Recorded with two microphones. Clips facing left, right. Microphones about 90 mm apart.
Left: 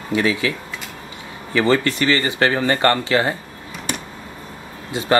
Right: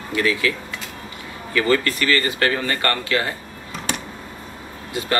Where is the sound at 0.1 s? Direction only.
20° left (ahead or behind).